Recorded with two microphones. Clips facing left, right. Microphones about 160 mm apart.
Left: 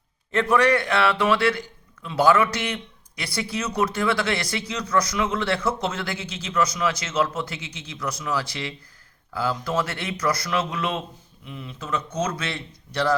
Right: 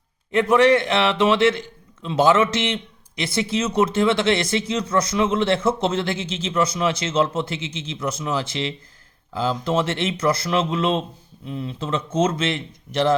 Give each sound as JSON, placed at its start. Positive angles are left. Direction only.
{"t": 0.3, "sound": "a man's voice", "side_deg": -20}